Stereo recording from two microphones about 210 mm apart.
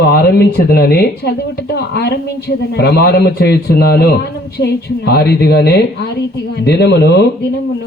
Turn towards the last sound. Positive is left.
turn(degrees=50)  # may be behind; listen again after turning